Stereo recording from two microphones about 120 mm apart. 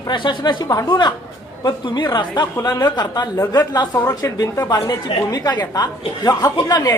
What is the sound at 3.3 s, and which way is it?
A woman's voice, 25° left (ahead or behind).